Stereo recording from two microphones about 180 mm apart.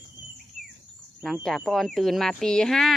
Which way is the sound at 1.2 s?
Centre (ahead or behind).